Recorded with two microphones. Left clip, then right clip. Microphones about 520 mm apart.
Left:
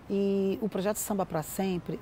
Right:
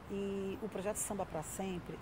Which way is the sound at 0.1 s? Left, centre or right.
Left.